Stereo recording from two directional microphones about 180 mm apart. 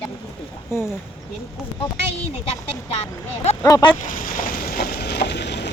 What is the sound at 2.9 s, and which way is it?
Speech, 35° left (ahead or behind).